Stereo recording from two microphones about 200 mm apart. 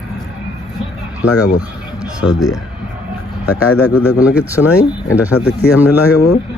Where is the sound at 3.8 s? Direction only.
10° right (ahead or behind).